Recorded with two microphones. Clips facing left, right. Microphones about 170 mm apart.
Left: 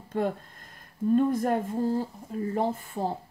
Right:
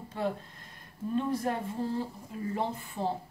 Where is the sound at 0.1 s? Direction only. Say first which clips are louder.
Left 5 dB; 50° left (ahead or behind).